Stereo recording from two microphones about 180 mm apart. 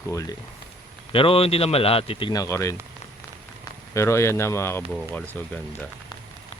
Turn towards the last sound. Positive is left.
turn(degrees=10)  # may be behind; listen again after turning